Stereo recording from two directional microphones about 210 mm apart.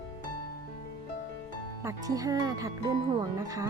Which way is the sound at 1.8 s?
15° right (ahead or behind).